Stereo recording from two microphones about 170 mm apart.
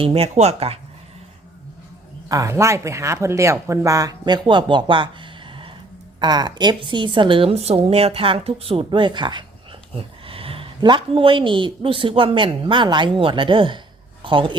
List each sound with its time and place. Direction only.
0.0 s speech: 35° right (ahead or behind)
2.3 s speech: 20° right (ahead or behind)